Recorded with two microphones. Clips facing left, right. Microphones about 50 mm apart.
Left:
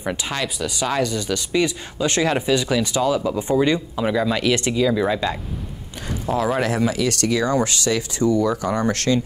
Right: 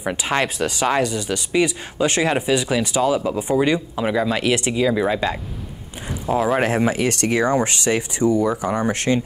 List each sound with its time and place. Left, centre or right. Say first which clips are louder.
0.2 s speech: right 5 dB; right
6.3 s speech: right 2 dB; right